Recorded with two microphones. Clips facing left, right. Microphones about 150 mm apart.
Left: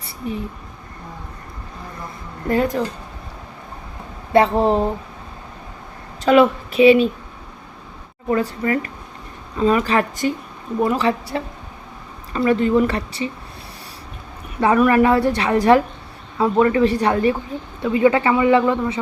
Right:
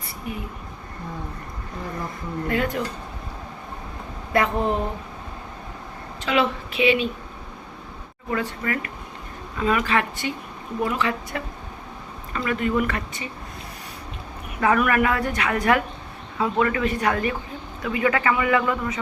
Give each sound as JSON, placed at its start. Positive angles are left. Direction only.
{"t": 0.2, "sound": "speech", "side_deg": 30}
{"t": 2.5, "sound": "a woman's voice", "side_deg": 35}
{"t": 4.3, "sound": "a woman's voice", "side_deg": 30}
{"t": 6.2, "sound": "a woman's voice", "side_deg": 45}
{"t": 8.3, "sound": "a woman's voice", "side_deg": 35}
{"t": 14.6, "sound": "a woman's voice", "side_deg": 30}